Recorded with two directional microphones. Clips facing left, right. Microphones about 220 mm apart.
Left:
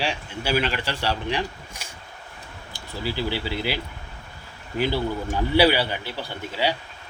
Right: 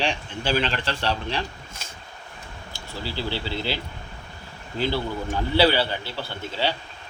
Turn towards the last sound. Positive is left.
turn(degrees=10)  # may be behind; listen again after turning